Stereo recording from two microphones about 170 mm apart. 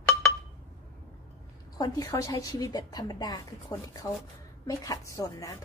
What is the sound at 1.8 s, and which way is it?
A woman's voice, 20° left (ahead or behind).